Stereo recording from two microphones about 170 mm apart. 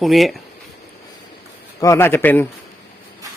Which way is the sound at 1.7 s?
20° left (ahead or behind).